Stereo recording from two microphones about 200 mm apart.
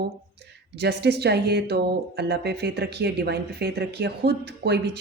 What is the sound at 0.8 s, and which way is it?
Speech, 55° right (ahead or behind).